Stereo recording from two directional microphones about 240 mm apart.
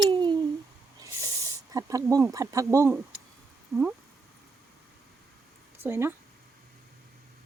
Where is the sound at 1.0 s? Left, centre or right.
Centre.